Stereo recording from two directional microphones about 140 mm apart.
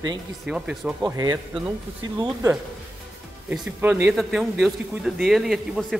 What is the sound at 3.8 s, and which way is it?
Speech, 15° right (ahead or behind).